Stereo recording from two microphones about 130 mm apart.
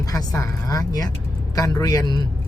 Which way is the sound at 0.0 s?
25° left (ahead or behind).